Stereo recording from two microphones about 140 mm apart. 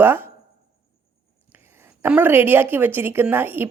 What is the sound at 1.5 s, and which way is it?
A woman's voice, 10° right (ahead or behind).